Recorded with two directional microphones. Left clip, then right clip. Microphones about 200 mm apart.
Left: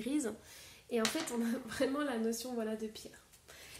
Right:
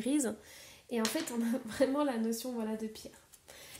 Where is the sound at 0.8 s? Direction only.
35° right (ahead or behind).